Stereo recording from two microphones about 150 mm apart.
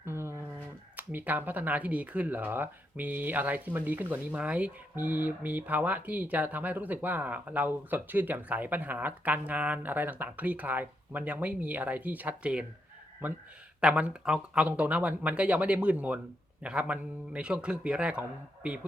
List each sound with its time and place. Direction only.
0.0 s a sound: 15° right (ahead or behind)
0.9 s speech: 10° right (ahead or behind)
13.8 s speech: 5° right (ahead or behind)